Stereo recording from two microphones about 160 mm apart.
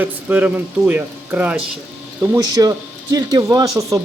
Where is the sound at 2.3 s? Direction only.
20° right (ahead or behind).